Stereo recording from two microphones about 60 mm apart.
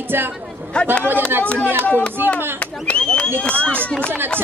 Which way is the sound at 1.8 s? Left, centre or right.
Left.